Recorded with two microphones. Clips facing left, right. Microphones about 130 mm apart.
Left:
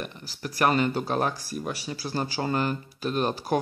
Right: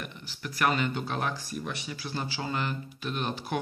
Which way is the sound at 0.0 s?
35° left (ahead or behind).